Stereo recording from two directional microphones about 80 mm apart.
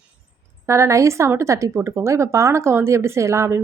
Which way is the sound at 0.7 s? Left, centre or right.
Right.